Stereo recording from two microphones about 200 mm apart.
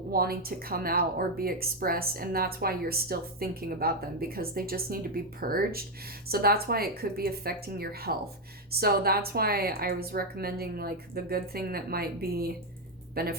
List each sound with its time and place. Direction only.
0.1 s speech: 50° right (ahead or behind)